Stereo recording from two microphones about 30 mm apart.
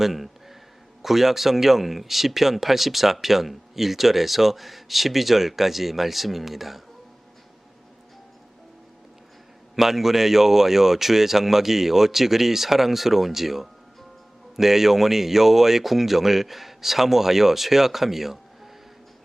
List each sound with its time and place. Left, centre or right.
0.0 s a sound: centre
1.0 s speech: centre
9.7 s speech: centre